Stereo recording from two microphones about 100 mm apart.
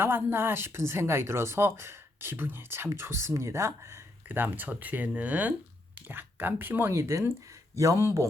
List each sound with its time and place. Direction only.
0.0 s speech: 25° right (ahead or behind)